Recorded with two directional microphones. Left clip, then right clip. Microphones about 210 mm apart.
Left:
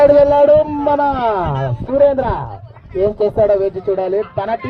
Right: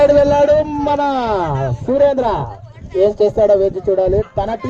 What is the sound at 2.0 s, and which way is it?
A man's voice, 50° right (ahead or behind).